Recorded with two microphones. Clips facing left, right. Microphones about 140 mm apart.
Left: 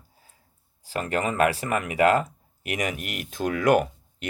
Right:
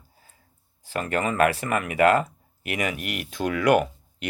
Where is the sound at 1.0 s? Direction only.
35° left (ahead or behind).